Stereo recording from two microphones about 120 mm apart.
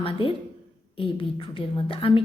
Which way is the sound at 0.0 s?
50° left (ahead or behind).